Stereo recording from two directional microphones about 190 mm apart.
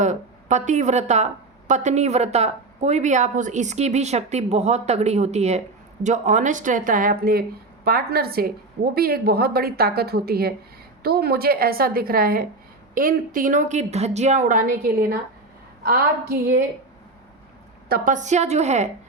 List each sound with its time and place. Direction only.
0.0 s a woman's voice: 40° right (ahead or behind)
17.8 s speech: 50° right (ahead or behind)